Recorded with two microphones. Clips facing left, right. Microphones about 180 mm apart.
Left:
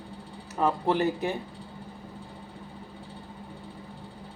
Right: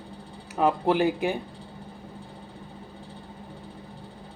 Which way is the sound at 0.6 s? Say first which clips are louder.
Right 3 dB; 60° right (ahead or behind).